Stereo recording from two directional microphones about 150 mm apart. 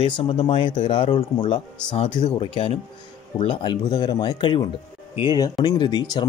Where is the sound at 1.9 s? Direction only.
45° left (ahead or behind); by 6.3 s 30° left (ahead or behind).